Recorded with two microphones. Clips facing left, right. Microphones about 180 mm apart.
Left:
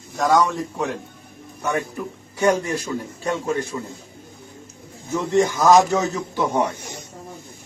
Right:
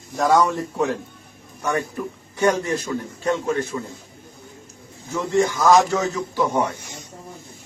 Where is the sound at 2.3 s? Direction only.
10° left (ahead or behind).